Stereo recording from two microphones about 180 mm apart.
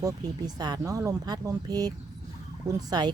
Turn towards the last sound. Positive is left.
turn(degrees=-20)  # may be behind; listen again after turning